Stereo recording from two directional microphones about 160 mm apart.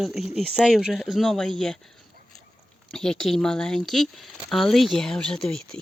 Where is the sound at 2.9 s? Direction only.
5° left (ahead or behind).